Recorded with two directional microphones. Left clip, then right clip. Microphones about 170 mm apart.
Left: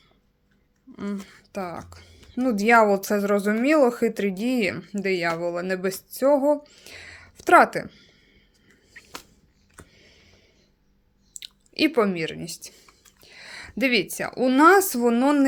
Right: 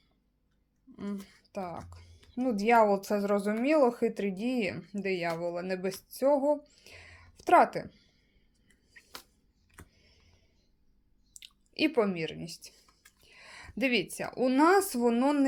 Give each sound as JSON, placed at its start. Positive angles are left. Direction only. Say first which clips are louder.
{"t": 0.9, "sound": "speech", "louder": "left 7 dB", "side_deg": 10}
{"t": 8.6, "sound": "a sound", "louder": "left 9 dB", "side_deg": 15}
{"t": 9.9, "sound": "tick", "louder": "left 11 dB", "side_deg": 20}
{"t": 11.3, "sound": "speech", "louder": "left 7 dB", "side_deg": 15}